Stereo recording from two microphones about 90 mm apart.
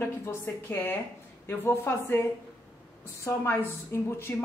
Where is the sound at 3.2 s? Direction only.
30° left (ahead or behind).